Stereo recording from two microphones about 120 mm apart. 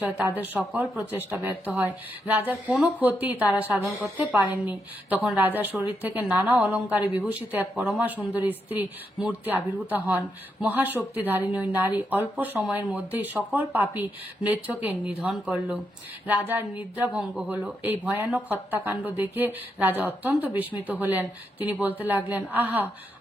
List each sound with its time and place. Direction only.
0.0 s a woman's voice: 15° right (ahead or behind)